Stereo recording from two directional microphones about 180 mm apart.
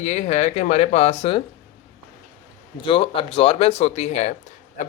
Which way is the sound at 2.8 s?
30° left (ahead or behind).